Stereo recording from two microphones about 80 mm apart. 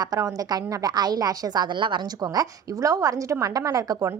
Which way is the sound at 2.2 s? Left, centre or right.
Right.